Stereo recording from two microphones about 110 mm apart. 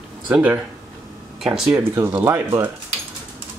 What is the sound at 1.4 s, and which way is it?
Speech, 5° right (ahead or behind).